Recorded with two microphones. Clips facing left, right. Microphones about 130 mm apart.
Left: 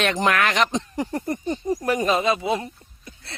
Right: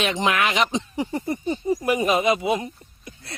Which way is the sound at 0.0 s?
Centre (ahead or behind).